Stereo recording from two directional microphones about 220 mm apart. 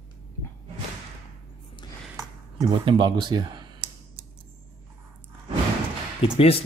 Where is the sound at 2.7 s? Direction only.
20° right (ahead or behind).